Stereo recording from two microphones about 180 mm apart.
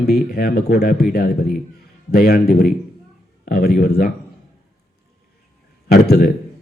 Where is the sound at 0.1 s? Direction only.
60° left (ahead or behind).